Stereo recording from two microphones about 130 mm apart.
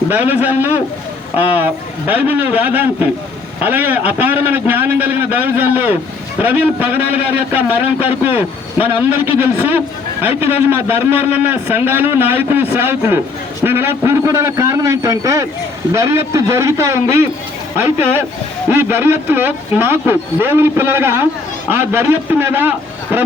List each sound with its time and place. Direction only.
0.1 s a man's voice: 15° right (ahead or behind)